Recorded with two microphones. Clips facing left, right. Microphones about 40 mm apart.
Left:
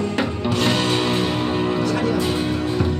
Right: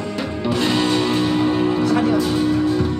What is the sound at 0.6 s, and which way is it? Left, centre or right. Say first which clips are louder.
Music: right 2 dB; centre.